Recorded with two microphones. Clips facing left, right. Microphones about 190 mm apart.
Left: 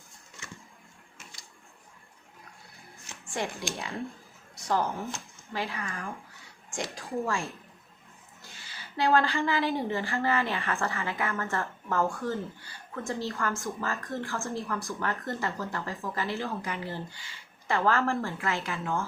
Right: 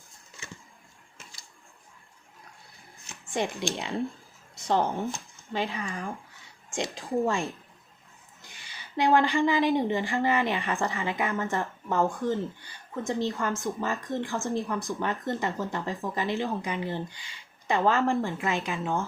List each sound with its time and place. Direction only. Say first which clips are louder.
3.4 s speech: right 4 dB; 20° right (ahead or behind)
4.5 s a woman's voice: right 3 dB; 25° right (ahead or behind)